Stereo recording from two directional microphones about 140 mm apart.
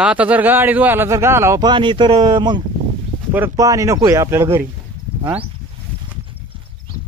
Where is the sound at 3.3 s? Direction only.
15° right (ahead or behind).